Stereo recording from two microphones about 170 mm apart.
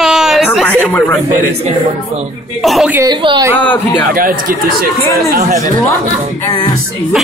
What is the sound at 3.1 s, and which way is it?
Speech, 30° right (ahead or behind).